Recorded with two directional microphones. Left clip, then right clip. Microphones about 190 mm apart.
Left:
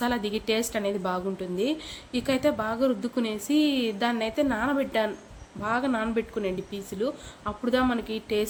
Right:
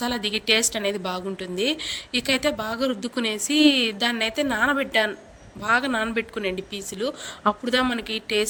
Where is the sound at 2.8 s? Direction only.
40° right (ahead or behind).